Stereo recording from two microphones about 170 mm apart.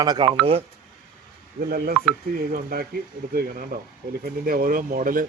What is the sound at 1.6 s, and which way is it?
Speech, 60° right (ahead or behind).